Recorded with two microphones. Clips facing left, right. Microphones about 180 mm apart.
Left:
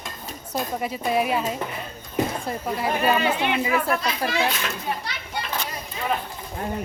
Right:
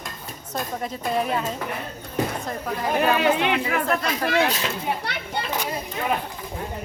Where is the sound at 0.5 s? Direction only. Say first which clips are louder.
Left 2 dB; 5° left (ahead or behind).